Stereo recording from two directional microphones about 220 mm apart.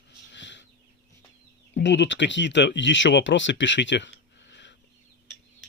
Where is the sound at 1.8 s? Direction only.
55° left (ahead or behind).